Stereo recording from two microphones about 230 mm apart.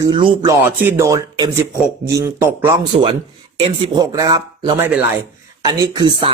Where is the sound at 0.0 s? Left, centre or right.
Centre.